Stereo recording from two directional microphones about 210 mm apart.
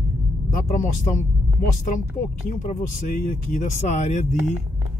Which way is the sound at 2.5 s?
35° left (ahead or behind).